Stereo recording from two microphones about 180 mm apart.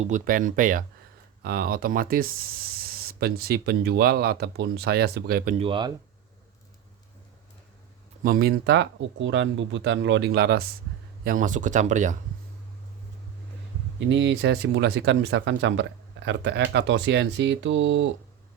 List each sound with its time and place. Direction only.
0.0 s speech: 45° right (ahead or behind)
5.5 s speech: 30° right (ahead or behind)
8.2 s speech: 55° right (ahead or behind)
11.2 s speech: 50° right (ahead or behind)
14.0 s speech: 90° right